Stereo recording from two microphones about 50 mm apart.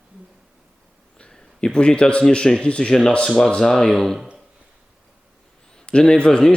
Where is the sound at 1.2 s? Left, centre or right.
Centre.